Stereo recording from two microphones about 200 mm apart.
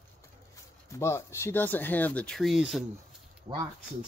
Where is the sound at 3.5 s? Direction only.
25° right (ahead or behind).